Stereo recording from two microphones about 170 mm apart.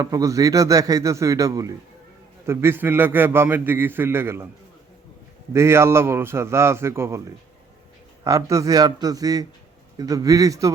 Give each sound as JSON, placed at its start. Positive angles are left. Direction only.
{"t": 0.0, "sound": "a man's voice", "side_deg": -20}
{"t": 5.5, "sound": "a man's voice", "side_deg": -15}
{"t": 8.2, "sound": "a man's voice", "side_deg": -20}